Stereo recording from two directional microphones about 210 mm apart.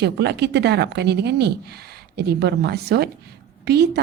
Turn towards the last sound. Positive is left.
turn(degrees=-50)  # may be behind; listen again after turning